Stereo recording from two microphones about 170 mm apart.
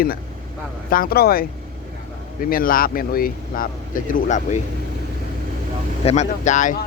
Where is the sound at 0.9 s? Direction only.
55° left (ahead or behind).